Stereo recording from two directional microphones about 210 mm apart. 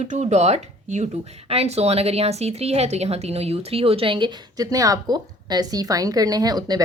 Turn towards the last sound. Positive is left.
turn(degrees=-20)  # may be behind; listen again after turning